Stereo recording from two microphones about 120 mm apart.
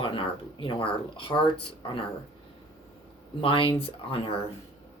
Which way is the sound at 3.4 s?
50° left (ahead or behind).